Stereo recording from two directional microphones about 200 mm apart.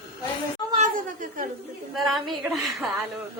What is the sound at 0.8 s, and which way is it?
Speech, 40° right (ahead or behind).